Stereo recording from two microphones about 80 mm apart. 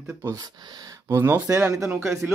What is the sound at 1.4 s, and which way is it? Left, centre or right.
Speech, right.